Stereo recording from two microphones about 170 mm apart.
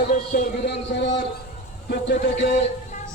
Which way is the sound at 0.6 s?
90° left.